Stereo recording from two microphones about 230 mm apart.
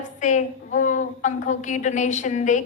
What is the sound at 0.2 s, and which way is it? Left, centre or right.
A woman's voice, left.